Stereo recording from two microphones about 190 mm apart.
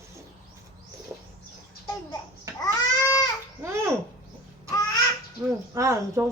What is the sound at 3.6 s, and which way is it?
Babbling, 15° right (ahead or behind).